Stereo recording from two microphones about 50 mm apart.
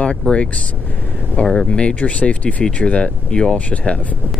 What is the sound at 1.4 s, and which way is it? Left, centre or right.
Speech, centre.